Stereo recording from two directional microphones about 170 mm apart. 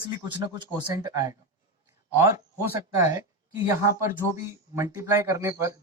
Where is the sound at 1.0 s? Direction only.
20° right (ahead or behind).